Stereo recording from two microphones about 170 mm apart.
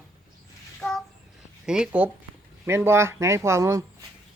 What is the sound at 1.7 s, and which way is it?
Speech, 5° right (ahead or behind).